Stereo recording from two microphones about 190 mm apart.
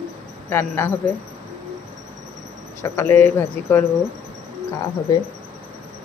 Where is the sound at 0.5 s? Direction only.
15° left (ahead or behind).